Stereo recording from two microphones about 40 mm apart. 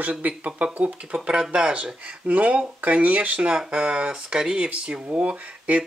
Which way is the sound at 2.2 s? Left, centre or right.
Right.